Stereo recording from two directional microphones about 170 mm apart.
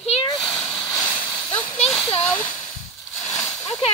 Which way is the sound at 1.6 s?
40° left (ahead or behind).